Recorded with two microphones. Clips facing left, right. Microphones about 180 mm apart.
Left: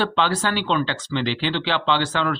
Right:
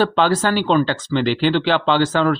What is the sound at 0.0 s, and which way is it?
Speech, 45° right (ahead or behind).